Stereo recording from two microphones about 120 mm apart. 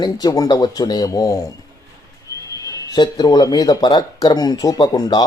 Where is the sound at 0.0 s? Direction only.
35° left (ahead or behind).